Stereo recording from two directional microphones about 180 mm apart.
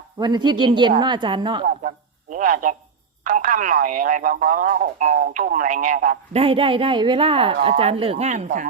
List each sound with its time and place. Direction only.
0.2 s a woman's voice: 25° right (ahead or behind)
2.3 s speech: 45° right (ahead or behind)
6.4 s a woman's voice: 30° right (ahead or behind)